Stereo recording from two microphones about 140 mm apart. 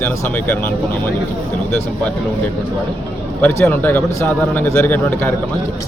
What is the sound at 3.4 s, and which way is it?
Speech, 10° left (ahead or behind).